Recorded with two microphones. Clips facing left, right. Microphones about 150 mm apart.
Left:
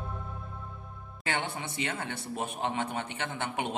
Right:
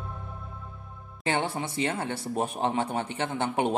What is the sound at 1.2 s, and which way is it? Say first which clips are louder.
Speech: right 5 dB; 30° right (ahead or behind).